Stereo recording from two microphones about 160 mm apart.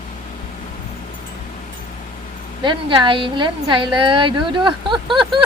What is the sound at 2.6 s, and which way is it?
A woman's voice, 30° right (ahead or behind).